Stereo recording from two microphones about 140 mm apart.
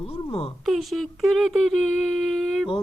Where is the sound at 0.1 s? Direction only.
45° left (ahead or behind).